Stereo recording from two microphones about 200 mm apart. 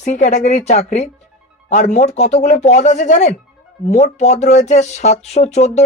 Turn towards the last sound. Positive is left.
turn(degrees=35)  # may be behind; listen again after turning